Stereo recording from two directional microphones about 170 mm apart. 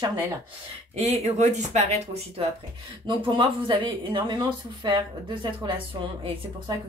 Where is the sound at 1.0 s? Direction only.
35° right (ahead or behind).